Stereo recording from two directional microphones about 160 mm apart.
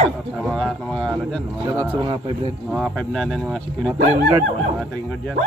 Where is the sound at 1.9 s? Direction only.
30° right (ahead or behind).